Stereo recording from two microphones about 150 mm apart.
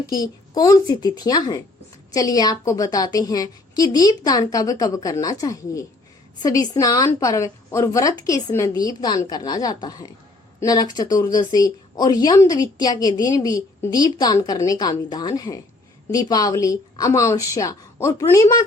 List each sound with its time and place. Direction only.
0.1 s speech: 25° left (ahead or behind)